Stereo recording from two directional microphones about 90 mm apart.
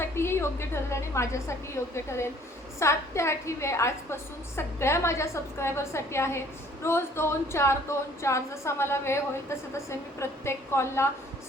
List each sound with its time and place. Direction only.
0.0 s a woman's voice: 25° left (ahead or behind)